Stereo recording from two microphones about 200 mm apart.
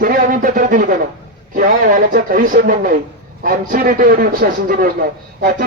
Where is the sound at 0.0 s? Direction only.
45° right (ahead or behind).